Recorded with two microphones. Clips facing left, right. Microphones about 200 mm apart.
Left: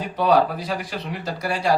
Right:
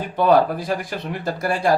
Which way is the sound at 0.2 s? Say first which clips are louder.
Right 2 dB; 50° right (ahead or behind).